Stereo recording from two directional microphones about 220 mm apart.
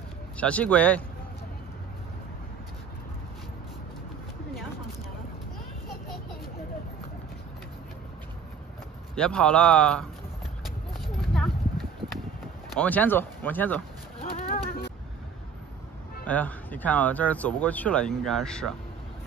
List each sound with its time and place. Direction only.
0.4 s a man's voice: 5° left (ahead or behind)
9.1 s a man's voice: 5° left (ahead or behind)
10.9 s clip-clop: centre (ahead or behind)
12.7 s speech: 5° left (ahead or behind)
14.4 s music: 40° left (ahead or behind)
16.3 s speech: 5° left (ahead or behind)